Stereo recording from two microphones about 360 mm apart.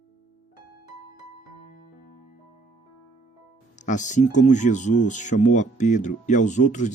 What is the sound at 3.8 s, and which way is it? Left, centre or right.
Speech, centre.